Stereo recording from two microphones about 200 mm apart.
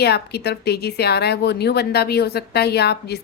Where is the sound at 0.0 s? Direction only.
55° left (ahead or behind).